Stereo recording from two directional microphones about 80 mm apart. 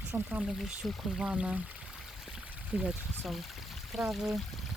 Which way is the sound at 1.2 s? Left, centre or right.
Centre.